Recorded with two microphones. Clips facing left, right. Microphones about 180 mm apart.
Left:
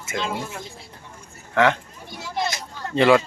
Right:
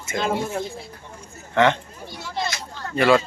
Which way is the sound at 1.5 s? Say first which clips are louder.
Right 1 dB; centre (ahead or behind).